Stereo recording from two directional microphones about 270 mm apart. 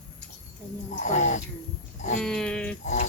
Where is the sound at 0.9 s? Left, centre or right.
Left.